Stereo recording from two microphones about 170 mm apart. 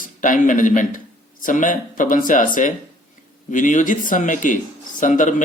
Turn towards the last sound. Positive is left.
turn(degrees=50)  # may be behind; listen again after turning